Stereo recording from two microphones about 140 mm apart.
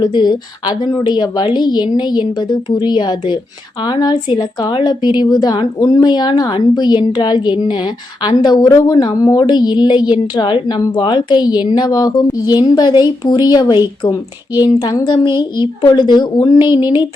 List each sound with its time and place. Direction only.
0.0 s a woman's voice: 30° left (ahead or behind)